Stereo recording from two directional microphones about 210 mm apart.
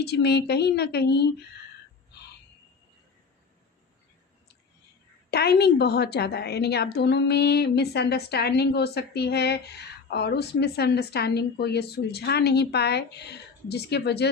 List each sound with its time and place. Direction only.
0.0 s a woman's voice: 50° left (ahead or behind)
5.3 s a woman's voice: 50° left (ahead or behind)